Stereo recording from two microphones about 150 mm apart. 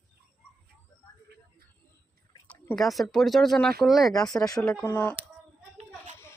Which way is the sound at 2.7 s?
Centre (ahead or behind).